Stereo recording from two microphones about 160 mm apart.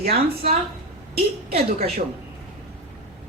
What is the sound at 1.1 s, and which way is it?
Speech, 40° right (ahead or behind).